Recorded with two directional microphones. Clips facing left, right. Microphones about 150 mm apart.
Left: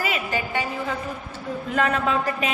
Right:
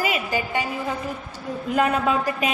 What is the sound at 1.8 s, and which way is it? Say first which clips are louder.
Speech: right 2 dB; 15° right (ahead or behind).